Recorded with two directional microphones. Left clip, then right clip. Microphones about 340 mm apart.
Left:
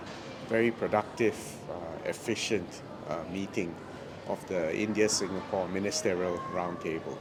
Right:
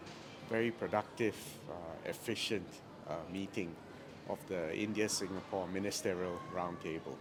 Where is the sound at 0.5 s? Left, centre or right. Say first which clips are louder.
Left 8 dB; centre.